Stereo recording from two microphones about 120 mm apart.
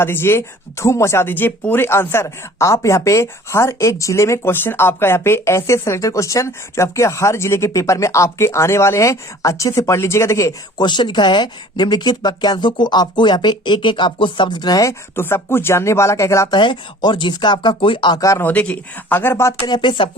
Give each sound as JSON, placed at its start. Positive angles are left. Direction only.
{"t": 0.0, "sound": "speech", "side_deg": 20}
{"t": 10.8, "sound": "speech", "side_deg": 40}
{"t": 16.5, "sound": "speech", "side_deg": 40}
{"t": 18.2, "sound": "speech", "side_deg": 25}
{"t": 18.4, "sound": "speech", "side_deg": 10}
{"t": 19.6, "sound": "speech", "side_deg": 40}